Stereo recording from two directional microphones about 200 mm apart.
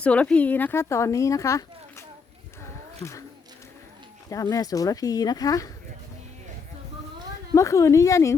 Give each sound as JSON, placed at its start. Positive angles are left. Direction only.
{"t": 0.0, "sound": "speech", "side_deg": 5}
{"t": 4.3, "sound": "speech", "side_deg": 15}
{"t": 7.5, "sound": "speech", "side_deg": 15}